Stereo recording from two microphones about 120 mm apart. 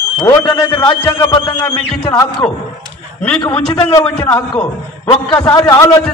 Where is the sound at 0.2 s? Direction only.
35° left (ahead or behind).